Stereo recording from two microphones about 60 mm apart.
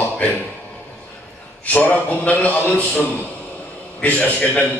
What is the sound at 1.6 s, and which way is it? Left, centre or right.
A man's voice, left.